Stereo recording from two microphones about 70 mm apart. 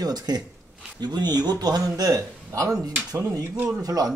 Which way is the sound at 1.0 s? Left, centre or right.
Right.